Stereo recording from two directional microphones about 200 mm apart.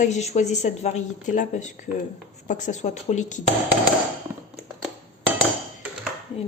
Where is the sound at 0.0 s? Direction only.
35° left (ahead or behind).